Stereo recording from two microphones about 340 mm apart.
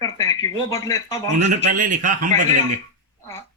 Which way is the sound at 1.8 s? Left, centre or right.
Right.